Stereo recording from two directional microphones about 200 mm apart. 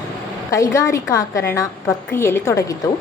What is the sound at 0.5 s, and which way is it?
A woman's voice, 15° left (ahead or behind).